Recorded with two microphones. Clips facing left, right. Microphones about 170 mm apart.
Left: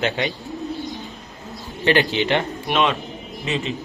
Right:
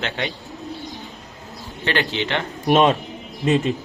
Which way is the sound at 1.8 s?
15° left (ahead or behind).